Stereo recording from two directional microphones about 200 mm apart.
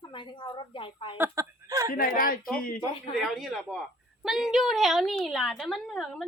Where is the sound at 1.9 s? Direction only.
45° left (ahead or behind).